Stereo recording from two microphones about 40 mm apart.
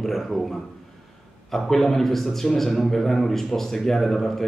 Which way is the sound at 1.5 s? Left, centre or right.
Centre.